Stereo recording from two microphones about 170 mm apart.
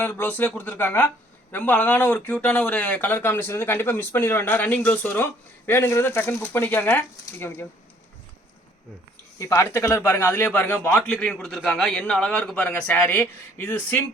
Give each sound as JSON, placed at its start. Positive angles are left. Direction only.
{"t": 0.0, "sound": "speech", "side_deg": 10}
{"t": 9.4, "sound": "speech", "side_deg": 20}